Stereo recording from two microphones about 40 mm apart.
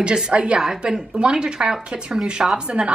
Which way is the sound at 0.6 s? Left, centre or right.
Centre.